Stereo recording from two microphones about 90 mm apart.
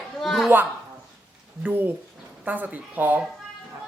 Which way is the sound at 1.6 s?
20° right (ahead or behind).